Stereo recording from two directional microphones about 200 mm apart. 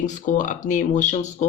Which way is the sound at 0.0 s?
40° left (ahead or behind).